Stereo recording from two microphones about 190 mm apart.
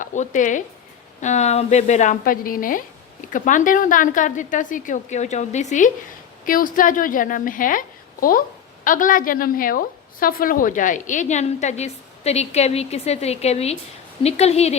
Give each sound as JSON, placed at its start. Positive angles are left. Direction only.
{"t": 0.0, "sound": "a woman's voice", "side_deg": 40}